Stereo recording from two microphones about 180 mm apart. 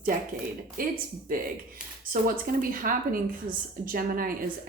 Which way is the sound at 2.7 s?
50° right (ahead or behind).